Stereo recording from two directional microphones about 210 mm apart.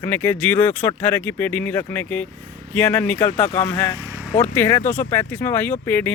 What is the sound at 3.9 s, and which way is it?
Vehicle, 15° right (ahead or behind).